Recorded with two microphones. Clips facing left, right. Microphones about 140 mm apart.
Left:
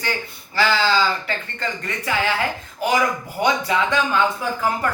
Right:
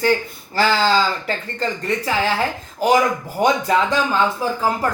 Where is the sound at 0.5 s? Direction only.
40° right (ahead or behind).